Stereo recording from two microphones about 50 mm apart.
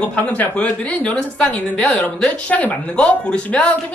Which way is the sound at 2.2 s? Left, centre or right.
Left.